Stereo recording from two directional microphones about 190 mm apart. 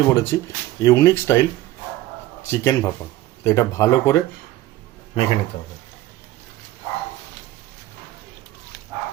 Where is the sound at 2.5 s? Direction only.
15° left (ahead or behind).